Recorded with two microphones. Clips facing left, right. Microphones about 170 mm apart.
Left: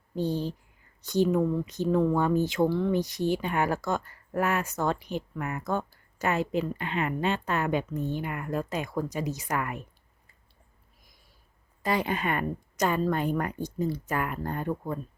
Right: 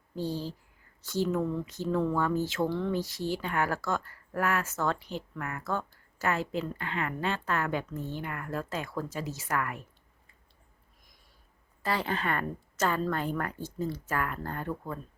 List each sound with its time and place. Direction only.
0.2 s a woman's voice: 20° left (ahead or behind)
2.9 s a woman's voice: 20° left (ahead or behind)
11.8 s speech: 15° left (ahead or behind)